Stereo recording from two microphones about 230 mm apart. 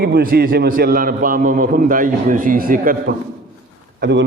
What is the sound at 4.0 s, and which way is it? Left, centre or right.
Speech, right.